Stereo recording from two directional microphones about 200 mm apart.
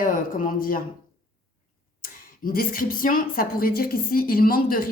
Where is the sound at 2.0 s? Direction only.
45° left (ahead or behind).